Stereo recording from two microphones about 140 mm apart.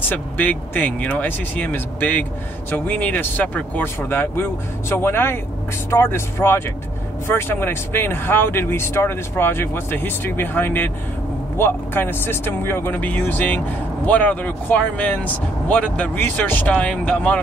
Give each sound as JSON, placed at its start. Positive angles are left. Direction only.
{"t": 0.1, "sound": "speech", "side_deg": 10}